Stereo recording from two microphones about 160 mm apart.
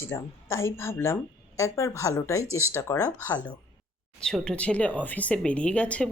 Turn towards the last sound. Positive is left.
turn(degrees=5)  # may be behind; listen again after turning